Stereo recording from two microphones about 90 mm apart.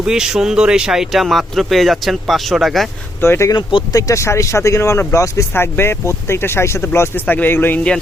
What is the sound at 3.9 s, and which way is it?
Speech, 40° left (ahead or behind).